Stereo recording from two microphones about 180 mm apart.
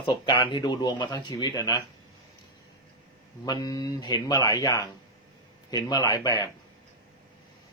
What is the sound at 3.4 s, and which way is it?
Speech, 20° left (ahead or behind).